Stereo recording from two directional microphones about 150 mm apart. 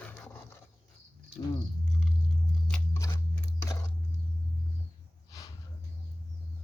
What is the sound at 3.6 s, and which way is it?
Biting, 20° left (ahead or behind).